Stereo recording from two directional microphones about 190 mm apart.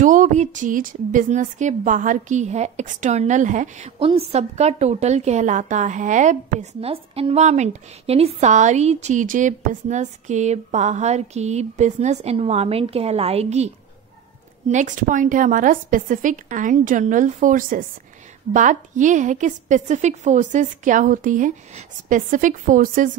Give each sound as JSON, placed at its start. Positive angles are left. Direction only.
{"t": 0.0, "sound": "a woman's voice", "side_deg": -40}
{"t": 6.8, "sound": "a woman's voice", "side_deg": -30}
{"t": 14.7, "sound": "a woman's voice", "side_deg": -40}